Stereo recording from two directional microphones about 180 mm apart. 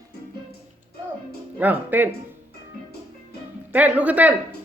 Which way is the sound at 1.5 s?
10° right (ahead or behind).